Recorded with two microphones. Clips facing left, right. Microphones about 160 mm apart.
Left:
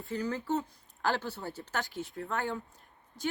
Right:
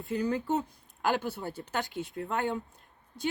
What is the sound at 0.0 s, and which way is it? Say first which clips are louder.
Speech: right 4 dB; 15° right (ahead or behind).